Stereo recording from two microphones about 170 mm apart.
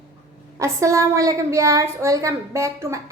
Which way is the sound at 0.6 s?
15° right (ahead or behind).